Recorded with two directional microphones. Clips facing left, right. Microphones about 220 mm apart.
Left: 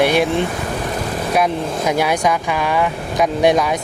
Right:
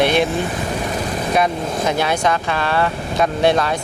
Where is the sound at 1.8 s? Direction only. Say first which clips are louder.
Left 2 dB; 10° left (ahead or behind).